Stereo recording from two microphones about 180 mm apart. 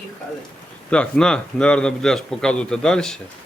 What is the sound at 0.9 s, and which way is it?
A man's voice, 5° left (ahead or behind).